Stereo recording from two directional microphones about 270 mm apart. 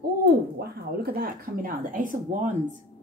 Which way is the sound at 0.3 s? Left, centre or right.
Right.